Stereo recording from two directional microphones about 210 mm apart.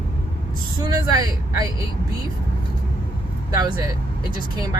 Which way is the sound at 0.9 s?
20° right (ahead or behind).